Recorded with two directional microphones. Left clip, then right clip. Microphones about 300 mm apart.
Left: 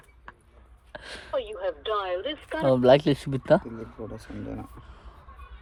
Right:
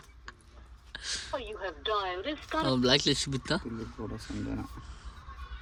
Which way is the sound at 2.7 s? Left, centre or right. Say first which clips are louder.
Left 8 dB; centre.